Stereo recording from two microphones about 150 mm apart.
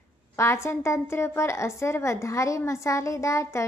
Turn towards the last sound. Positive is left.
turn(degrees=20)  # may be behind; listen again after turning